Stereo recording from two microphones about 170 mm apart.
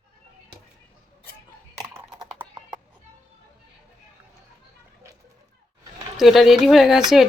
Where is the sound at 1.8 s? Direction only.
20° right (ahead or behind).